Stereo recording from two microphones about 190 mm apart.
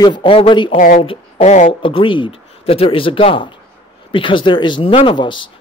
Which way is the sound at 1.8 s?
25° left (ahead or behind).